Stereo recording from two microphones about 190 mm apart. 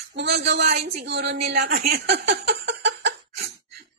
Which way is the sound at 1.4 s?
60° right (ahead or behind).